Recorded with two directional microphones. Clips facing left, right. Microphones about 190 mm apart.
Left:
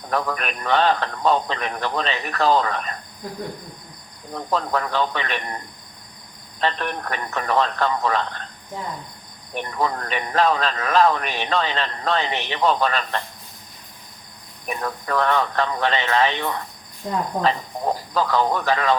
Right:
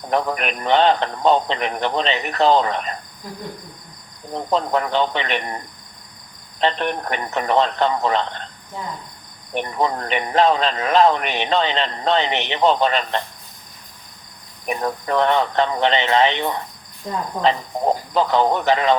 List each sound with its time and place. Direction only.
0.1 s speech: 25° right (ahead or behind)
4.4 s speech: 20° right (ahead or behind)
6.6 s speech: 25° right (ahead or behind)
9.6 s speech: 25° right (ahead or behind)
14.7 s speech: 25° right (ahead or behind)